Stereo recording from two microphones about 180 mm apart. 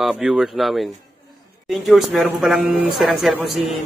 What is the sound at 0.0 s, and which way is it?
A man's voice, centre (ahead or behind).